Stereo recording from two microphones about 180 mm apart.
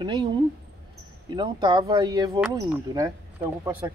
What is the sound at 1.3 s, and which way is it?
Speech, 25° right (ahead or behind).